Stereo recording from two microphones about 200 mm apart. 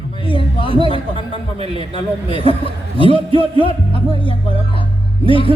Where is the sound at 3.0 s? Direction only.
30° right (ahead or behind).